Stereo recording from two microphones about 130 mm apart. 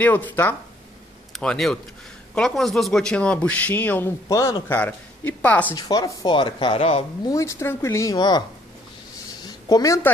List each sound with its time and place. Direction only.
0.0 s speech: 15° left (ahead or behind)
4.3 s speech: 25° left (ahead or behind)
4.6 s speech: 15° left (ahead or behind)
5.8 s speech: 30° left (ahead or behind); by 7.1 s 50° left (ahead or behind)
7.2 s speech: 25° left (ahead or behind)
9.4 s a sound: 30° left (ahead or behind)